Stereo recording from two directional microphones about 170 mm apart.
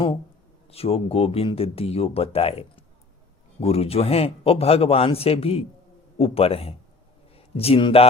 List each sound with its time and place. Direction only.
0.7 s speech: 35° left (ahead or behind)